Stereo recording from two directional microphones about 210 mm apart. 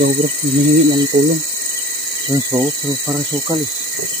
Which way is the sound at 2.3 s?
15° right (ahead or behind).